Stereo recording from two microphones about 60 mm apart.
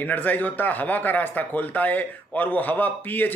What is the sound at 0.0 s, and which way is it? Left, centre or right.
Speech, left.